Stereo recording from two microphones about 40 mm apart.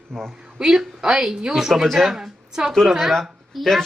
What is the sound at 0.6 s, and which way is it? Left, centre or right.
Speech, centre.